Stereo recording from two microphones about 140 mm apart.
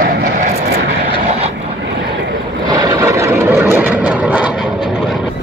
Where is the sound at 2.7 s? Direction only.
25° right (ahead or behind); by 4.5 s 10° right (ahead or behind).